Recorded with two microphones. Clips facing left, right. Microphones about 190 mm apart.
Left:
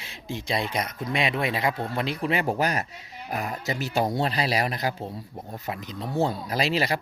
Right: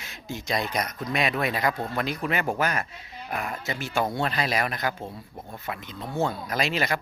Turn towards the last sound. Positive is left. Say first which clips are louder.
# left 2 dB
turn(degrees=35)  # may be behind; listen again after turning